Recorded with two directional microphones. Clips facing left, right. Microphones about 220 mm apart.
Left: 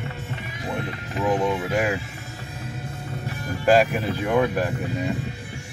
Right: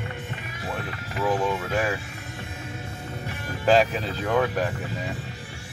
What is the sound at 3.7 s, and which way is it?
Speech, 10° left (ahead or behind).